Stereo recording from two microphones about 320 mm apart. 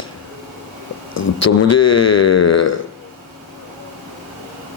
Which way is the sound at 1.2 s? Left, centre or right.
Left.